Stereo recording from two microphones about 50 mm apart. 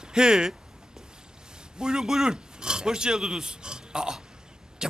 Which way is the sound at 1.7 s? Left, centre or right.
Centre.